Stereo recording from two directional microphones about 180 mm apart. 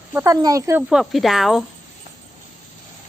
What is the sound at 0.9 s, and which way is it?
Speech, centre (ahead or behind).